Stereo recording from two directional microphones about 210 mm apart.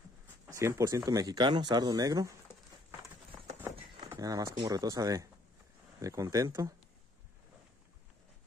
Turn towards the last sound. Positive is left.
turn(degrees=-15)  # may be behind; listen again after turning